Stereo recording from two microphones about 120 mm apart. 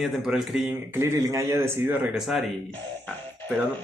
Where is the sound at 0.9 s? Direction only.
25° right (ahead or behind).